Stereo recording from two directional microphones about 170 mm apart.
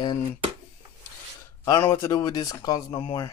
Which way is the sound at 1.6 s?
20° left (ahead or behind).